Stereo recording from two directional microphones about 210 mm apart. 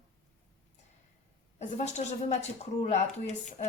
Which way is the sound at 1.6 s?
35° left (ahead or behind).